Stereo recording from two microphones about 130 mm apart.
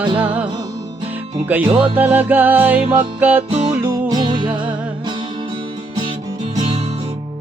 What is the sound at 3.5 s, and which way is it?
Music, 50° right (ahead or behind).